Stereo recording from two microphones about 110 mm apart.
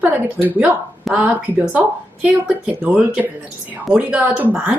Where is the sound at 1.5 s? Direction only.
20° right (ahead or behind).